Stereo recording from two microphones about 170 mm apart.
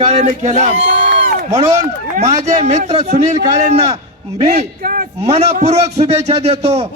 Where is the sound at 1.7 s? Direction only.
40° right (ahead or behind).